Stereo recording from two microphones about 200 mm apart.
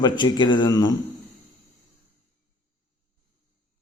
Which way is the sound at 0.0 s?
20° left (ahead or behind).